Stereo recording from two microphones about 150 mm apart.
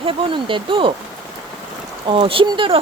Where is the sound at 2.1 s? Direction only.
35° right (ahead or behind).